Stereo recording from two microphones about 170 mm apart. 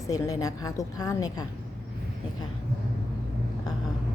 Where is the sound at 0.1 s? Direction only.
20° left (ahead or behind).